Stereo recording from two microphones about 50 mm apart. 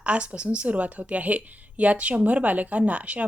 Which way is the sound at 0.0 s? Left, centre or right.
Right.